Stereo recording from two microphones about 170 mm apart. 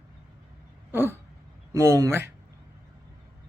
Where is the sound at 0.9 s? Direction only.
15° right (ahead or behind).